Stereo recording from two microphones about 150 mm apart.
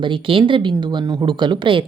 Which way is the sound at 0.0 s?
35° right (ahead or behind).